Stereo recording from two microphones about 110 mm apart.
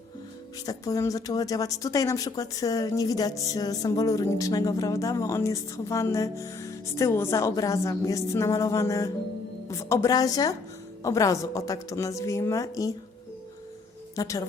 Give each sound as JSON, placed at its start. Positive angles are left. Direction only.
{"t": 0.6, "sound": "a woman's voice", "side_deg": 35}
{"t": 14.2, "sound": "a woman's voice", "side_deg": 30}